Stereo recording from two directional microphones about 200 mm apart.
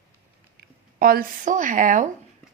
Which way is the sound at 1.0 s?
45° right (ahead or behind).